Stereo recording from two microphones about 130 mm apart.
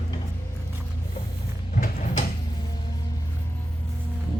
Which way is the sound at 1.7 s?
80° left.